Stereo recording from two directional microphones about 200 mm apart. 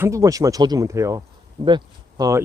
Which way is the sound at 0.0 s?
15° right (ahead or behind).